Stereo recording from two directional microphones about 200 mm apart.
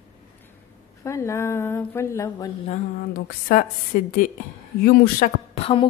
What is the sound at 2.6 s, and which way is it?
A woman's voice, 45° left (ahead or behind).